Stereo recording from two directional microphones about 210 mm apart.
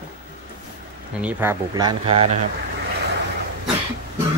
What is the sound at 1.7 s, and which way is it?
Speech, 20° right (ahead or behind).